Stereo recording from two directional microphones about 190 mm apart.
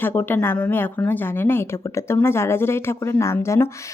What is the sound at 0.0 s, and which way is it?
A woman's voice, 10° left (ahead or behind).